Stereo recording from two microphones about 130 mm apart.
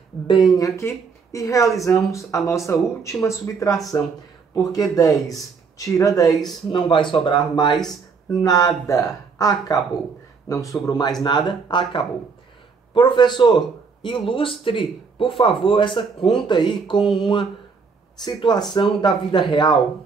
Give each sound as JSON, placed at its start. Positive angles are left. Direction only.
{"t": 0.6, "sound": "speech", "side_deg": 25}
{"t": 4.9, "sound": "speech", "side_deg": 25}
{"t": 6.7, "sound": "speech", "side_deg": 40}